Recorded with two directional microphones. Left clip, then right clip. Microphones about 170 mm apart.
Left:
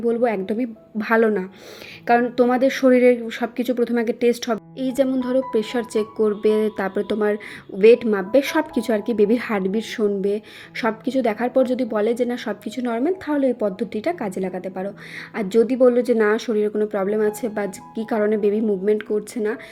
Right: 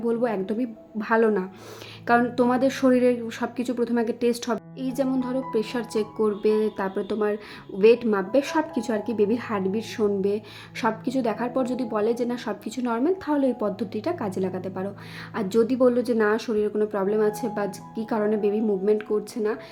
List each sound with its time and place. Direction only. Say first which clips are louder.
0.0 s speech: left 5 dB; 5° left (ahead or behind)
9.9 s speech: left 2 dB; 10° left (ahead or behind)